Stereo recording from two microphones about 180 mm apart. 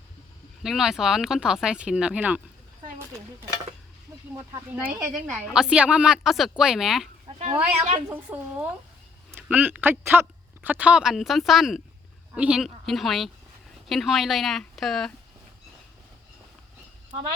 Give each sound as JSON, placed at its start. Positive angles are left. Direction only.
{"t": 0.6, "sound": "speech", "side_deg": 0}
{"t": 4.4, "sound": "speech", "side_deg": -15}
{"t": 7.3, "sound": "speech", "side_deg": -30}
{"t": 8.1, "sound": "speech", "side_deg": -10}